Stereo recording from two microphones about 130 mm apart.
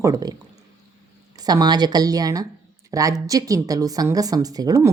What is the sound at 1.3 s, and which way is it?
A woman's voice, 30° right (ahead or behind).